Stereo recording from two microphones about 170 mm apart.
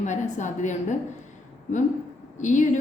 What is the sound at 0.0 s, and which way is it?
Speech, 45° left (ahead or behind).